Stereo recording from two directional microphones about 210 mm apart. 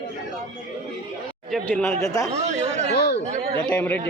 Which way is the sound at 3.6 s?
10° left (ahead or behind).